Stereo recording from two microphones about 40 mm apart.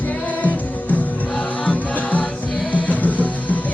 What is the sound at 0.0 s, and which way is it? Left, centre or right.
Music, left.